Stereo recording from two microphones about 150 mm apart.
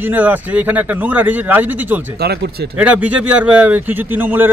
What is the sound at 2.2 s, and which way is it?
Speech, 90° right.